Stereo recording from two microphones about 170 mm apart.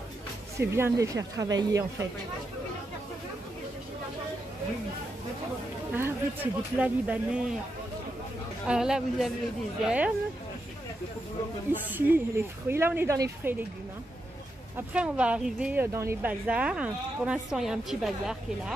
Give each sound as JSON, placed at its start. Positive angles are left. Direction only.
{"t": 0.6, "sound": "speech", "side_deg": -15}
{"t": 5.9, "sound": "a woman's voice", "side_deg": -10}
{"t": 8.6, "sound": "a woman's voice", "side_deg": -5}
{"t": 11.7, "sound": "a woman's voice", "side_deg": -10}
{"t": 14.9, "sound": "a woman's voice", "side_deg": -5}